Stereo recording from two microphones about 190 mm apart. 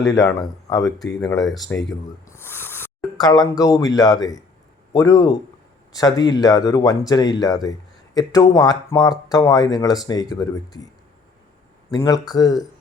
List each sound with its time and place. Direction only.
0.9 s speech: centre (ahead or behind)
2.2 s speech: 15° left (ahead or behind)
11.9 s speech: 20° left (ahead or behind)